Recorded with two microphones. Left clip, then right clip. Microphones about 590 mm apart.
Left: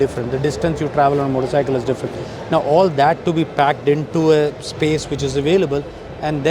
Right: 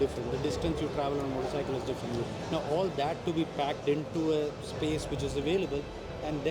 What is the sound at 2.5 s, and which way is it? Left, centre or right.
A man's voice, left.